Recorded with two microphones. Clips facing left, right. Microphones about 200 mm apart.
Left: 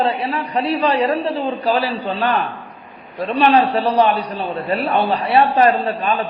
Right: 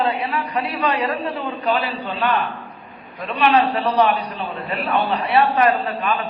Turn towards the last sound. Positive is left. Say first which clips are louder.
# left 3 dB
turn(degrees=30)  # may be behind; listen again after turning